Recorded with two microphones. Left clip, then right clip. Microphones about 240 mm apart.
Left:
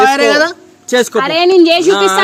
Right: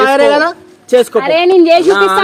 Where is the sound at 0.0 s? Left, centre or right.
Left.